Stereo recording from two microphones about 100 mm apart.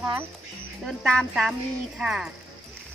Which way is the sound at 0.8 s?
5° left (ahead or behind).